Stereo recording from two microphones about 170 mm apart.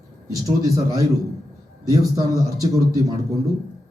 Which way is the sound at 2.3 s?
20° right (ahead or behind).